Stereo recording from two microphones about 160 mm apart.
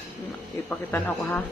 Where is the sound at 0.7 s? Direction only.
10° left (ahead or behind).